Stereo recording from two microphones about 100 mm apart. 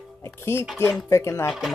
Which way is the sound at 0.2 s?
25° left (ahead or behind).